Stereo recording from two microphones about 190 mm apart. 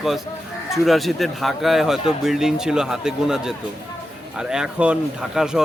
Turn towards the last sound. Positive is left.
turn(degrees=-5)  # may be behind; listen again after turning